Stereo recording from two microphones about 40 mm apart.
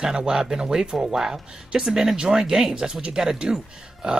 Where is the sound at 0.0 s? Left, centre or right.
Centre.